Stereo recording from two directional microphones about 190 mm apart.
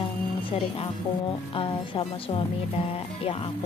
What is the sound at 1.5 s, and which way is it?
Speech, 25° left (ahead or behind).